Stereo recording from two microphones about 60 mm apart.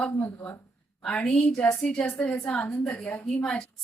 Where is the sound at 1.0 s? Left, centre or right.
Centre.